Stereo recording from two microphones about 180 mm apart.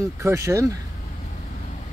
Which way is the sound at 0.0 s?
15° right (ahead or behind).